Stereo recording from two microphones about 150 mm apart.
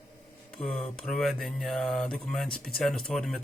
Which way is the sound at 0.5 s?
5° left (ahead or behind).